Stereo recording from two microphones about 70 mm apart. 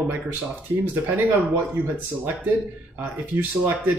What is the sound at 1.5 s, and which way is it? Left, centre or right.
Speech, right.